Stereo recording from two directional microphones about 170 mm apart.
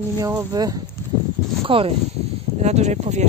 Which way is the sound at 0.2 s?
20° right (ahead or behind).